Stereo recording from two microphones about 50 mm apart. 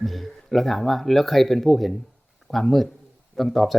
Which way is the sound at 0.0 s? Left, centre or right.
Centre.